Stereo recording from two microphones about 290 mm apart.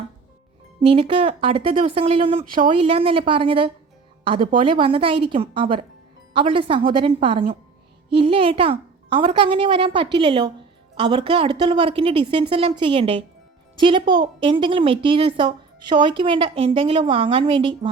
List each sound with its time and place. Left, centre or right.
0.8 s a woman's voice: centre